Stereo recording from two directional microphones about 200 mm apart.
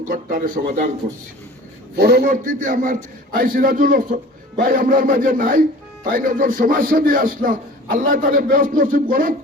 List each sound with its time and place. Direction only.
0.0 s a man's voice: 40° right (ahead or behind)
2.0 s a man's voice: 55° right (ahead or behind)